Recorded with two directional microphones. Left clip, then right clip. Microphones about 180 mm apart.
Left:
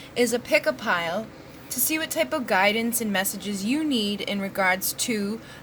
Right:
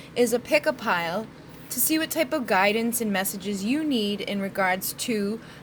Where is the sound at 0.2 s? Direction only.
5° right (ahead or behind).